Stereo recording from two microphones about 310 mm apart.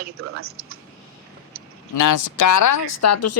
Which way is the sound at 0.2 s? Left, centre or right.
Right.